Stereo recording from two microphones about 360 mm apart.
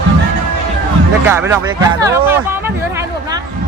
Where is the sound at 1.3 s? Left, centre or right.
Centre.